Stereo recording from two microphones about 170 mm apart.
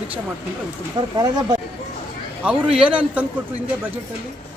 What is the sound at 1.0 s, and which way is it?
Speech, 25° right (ahead or behind).